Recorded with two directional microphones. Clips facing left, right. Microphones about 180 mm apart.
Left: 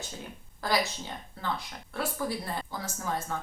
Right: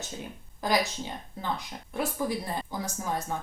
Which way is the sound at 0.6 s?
15° right (ahead or behind).